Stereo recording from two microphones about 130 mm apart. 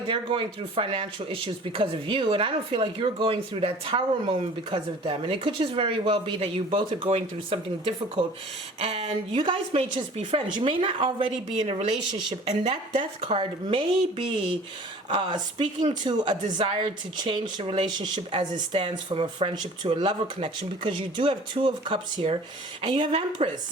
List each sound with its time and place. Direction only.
0.1 s speech: 40° right (ahead or behind)
9.0 s speech: 35° right (ahead or behind)
9.7 s speech: 50° right (ahead or behind)